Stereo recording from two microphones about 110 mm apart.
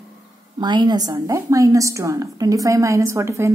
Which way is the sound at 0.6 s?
40° right (ahead or behind).